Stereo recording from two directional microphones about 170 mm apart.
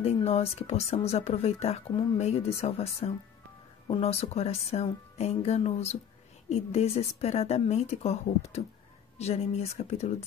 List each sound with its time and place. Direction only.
0.0 s speech: 35° left (ahead or behind)